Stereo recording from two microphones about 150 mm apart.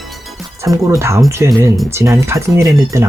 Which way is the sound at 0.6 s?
20° right (ahead or behind).